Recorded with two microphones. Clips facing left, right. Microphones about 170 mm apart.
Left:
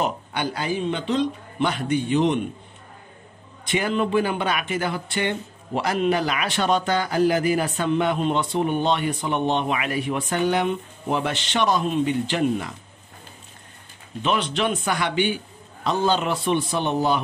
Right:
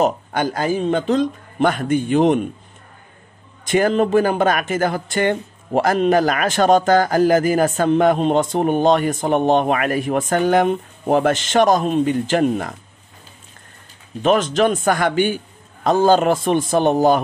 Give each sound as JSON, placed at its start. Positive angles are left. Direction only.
{"t": 0.0, "sound": "speech", "side_deg": -45}
{"t": 3.6, "sound": "speech", "side_deg": -45}
{"t": 14.2, "sound": "speech", "side_deg": -45}